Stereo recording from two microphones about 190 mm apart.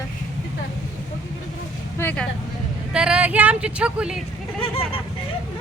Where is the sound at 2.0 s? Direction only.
5° left (ahead or behind).